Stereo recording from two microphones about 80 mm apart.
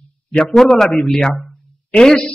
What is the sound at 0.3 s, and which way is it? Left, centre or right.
Speech, centre.